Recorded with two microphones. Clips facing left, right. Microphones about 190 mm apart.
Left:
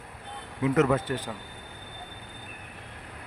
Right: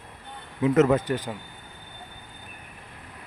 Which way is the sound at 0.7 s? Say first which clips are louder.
Right 4 dB; 25° right (ahead or behind).